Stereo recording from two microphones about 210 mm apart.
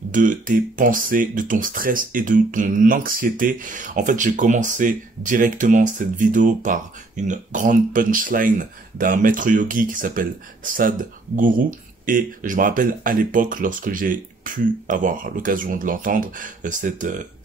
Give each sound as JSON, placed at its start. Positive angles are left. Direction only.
{"t": 0.1, "sound": "speech", "side_deg": -40}